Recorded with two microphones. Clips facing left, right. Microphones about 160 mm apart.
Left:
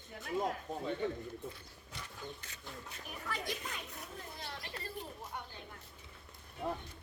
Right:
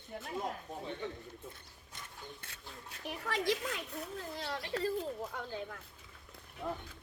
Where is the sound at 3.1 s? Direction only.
85° right.